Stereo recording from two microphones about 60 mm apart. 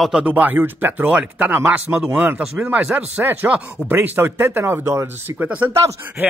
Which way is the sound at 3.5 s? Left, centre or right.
Right.